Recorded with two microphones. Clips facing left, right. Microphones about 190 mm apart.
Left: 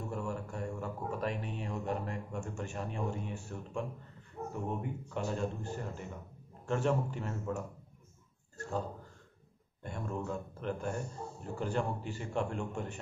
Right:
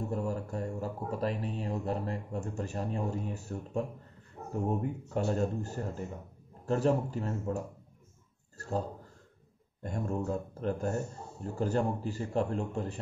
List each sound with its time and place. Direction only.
0.1 s a man's voice: 35° right (ahead or behind)
9.8 s speech: 40° right (ahead or behind)